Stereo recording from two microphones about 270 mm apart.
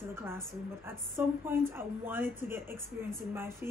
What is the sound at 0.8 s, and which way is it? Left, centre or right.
Speech, centre.